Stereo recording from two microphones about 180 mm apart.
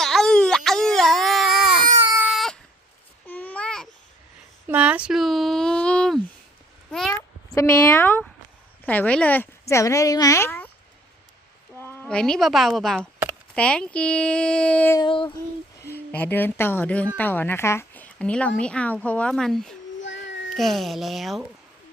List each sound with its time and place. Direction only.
0.0 s baby cry: centre (ahead or behind)
2.0 s baby cry: 15° right (ahead or behind)
2.3 s a sound: centre (ahead or behind)
3.2 s babbling: 10° left (ahead or behind)
4.6 s a sound: 10° right (ahead or behind)
7.1 s a sound: 15° left (ahead or behind)
8.8 s speech: 10° left (ahead or behind)
11.8 s speech: 10° left (ahead or behind)
14.9 s female singing: 25° left (ahead or behind)
15.8 s a woman's voice: 10° left (ahead or behind)
20.0 s a sound: 90° left
20.5 s speech: centre (ahead or behind)